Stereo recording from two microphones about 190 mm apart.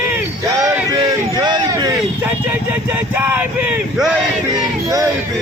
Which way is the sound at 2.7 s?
10° right (ahead or behind).